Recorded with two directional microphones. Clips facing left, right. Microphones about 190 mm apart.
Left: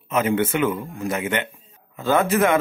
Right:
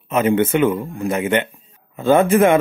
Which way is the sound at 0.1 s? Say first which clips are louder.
Right 5 dB; 25° right (ahead or behind).